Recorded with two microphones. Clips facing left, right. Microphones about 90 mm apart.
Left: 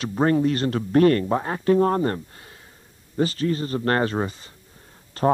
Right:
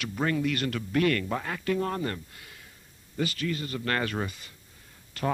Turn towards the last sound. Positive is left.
turn(degrees=35)  # may be behind; listen again after turning